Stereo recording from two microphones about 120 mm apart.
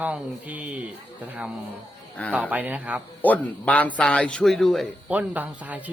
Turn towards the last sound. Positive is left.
turn(degrees=-10)  # may be behind; listen again after turning